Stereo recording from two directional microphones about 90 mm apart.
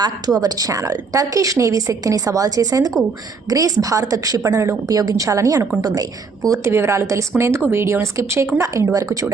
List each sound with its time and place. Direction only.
0.4 s a woman's voice: 40° right (ahead or behind)
6.5 s a woman's voice: 30° right (ahead or behind)